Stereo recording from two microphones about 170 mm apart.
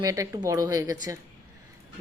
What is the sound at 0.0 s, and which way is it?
A woman's voice, 20° right (ahead or behind).